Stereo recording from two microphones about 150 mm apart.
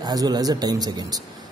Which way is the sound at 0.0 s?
25° right (ahead or behind).